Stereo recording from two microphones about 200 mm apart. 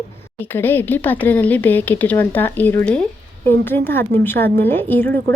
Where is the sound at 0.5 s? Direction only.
10° left (ahead or behind).